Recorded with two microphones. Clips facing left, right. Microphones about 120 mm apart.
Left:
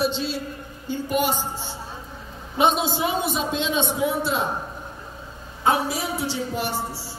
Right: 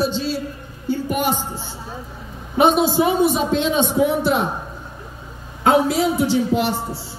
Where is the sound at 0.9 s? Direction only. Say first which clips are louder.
Right 3 dB; 50° right (ahead or behind).